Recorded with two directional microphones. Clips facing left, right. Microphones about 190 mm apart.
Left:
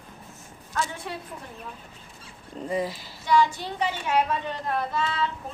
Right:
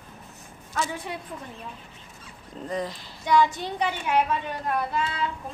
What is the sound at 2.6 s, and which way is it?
Speech, 5° left (ahead or behind).